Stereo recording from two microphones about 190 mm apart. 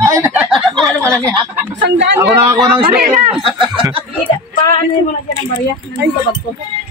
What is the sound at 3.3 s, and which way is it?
Speech, 25° right (ahead or behind).